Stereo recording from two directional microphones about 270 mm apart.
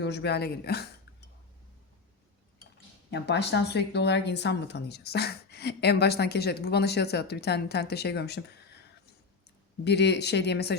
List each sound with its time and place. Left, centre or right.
0.0 s a woman's voice: left
3.1 s a woman's voice: left
9.8 s a woman's voice: left